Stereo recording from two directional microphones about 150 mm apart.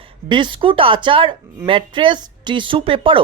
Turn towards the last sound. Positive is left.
turn(degrees=-35)  # may be behind; listen again after turning